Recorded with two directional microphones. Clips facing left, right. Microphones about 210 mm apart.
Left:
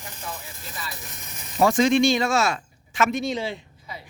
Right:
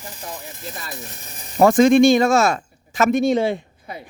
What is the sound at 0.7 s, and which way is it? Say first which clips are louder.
A man's voice: right 3 dB; 45° right (ahead or behind).